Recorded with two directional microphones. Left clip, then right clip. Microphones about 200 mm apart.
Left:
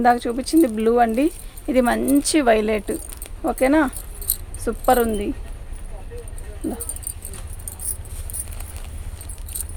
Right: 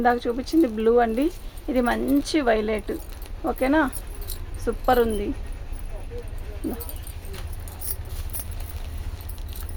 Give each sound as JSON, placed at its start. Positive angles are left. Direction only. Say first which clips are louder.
{"t": 0.0, "sound": "speech", "louder": "left 4 dB", "side_deg": 45}
{"t": 6.6, "sound": "speech", "louder": "left 3 dB", "side_deg": 45}